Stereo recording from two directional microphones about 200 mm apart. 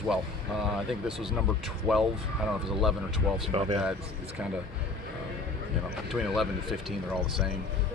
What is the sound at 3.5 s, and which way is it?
Speech, 30° right (ahead or behind).